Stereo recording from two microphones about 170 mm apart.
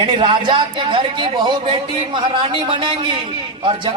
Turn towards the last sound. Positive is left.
turn(degrees=-30)  # may be behind; listen again after turning